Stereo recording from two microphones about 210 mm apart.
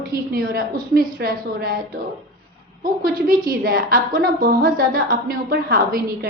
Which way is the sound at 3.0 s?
40° right (ahead or behind).